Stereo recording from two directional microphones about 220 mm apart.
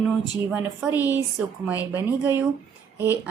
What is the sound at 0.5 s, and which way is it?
A woman's voice, 5° right (ahead or behind).